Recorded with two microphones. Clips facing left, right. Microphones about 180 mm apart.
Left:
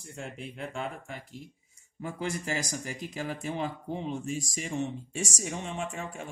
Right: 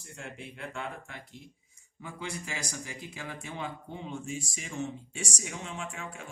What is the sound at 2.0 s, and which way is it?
Speech, 40° left (ahead or behind).